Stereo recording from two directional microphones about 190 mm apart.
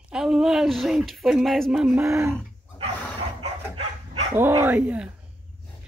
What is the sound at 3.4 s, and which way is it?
Dog, 30° right (ahead or behind).